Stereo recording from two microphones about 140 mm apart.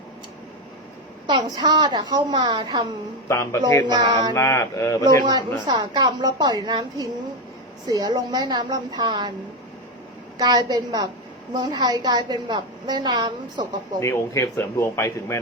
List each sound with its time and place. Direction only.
1.3 s a woman's voice: 30° right (ahead or behind)
3.2 s speech: 20° left (ahead or behind)
3.8 s a woman's voice: 30° right (ahead or behind)
4.4 s speech: 20° left (ahead or behind)
5.2 s a woman's voice: 30° right (ahead or behind)
10.3 s a woman's voice: 30° right (ahead or behind)
14.0 s speech: 20° left (ahead or behind)